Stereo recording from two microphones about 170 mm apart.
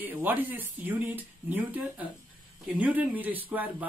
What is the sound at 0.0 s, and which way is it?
Speech, 10° right (ahead or behind).